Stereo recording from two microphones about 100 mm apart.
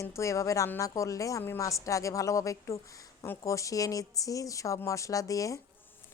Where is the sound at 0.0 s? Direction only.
30° left (ahead or behind).